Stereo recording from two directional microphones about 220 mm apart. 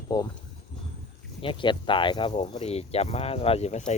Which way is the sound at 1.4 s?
25° left (ahead or behind).